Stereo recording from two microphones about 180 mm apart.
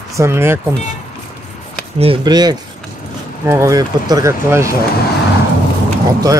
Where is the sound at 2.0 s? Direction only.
25° right (ahead or behind).